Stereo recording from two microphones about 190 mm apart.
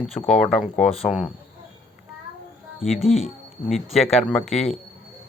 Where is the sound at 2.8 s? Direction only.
Centre (ahead or behind).